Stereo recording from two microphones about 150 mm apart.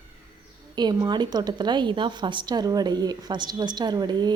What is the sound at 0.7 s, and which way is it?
A woman's voice, 30° right (ahead or behind).